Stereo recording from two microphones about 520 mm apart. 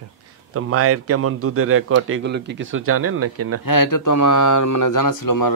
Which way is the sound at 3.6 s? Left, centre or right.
Left.